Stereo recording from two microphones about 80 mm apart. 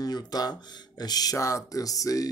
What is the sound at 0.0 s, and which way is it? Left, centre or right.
Speech, left.